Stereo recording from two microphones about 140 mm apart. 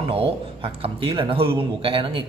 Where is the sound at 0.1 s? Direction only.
45° right (ahead or behind).